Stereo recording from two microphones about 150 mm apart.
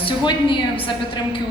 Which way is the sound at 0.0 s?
35° left (ahead or behind).